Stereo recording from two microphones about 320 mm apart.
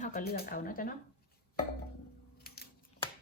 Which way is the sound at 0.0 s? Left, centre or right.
Left.